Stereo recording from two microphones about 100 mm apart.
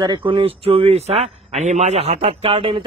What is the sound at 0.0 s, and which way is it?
A man's voice, 55° right (ahead or behind).